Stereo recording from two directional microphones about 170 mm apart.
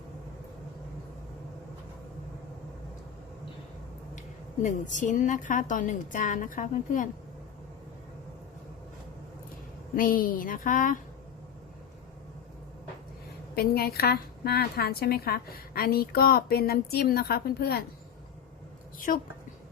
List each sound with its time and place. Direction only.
4.6 s a woman's voice: 50° left (ahead or behind)
9.9 s a woman's voice: 55° left (ahead or behind)
13.6 s a woman's voice: 65° left (ahead or behind)
18.9 s a woman's voice: 50° left (ahead or behind)